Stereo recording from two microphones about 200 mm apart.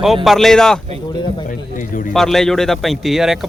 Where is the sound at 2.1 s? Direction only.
Centre (ahead or behind).